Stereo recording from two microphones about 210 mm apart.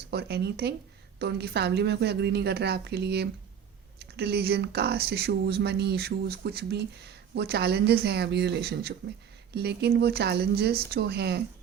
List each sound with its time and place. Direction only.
0.1 s speech: 50° right (ahead or behind)